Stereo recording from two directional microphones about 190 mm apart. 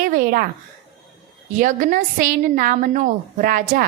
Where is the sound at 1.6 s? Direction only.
45° right (ahead or behind).